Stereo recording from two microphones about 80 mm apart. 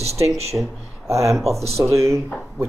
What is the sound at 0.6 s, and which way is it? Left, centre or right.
Speech, centre.